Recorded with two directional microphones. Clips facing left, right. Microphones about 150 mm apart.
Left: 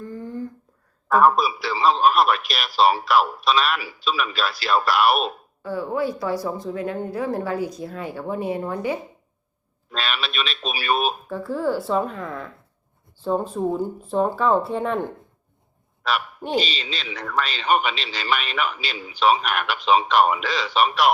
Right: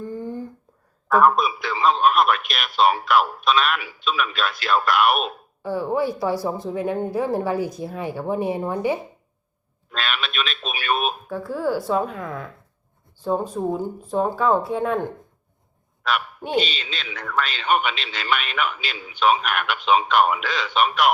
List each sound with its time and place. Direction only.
0.0 s a sound: 20° right (ahead or behind)
1.0 s a man's voice: centre (ahead or behind)
6.4 s a woman's voice: 25° right (ahead or behind)
9.9 s a man's voice: centre (ahead or behind)
13.5 s a man's voice: centre (ahead or behind)
16.0 s a man's voice: centre (ahead or behind)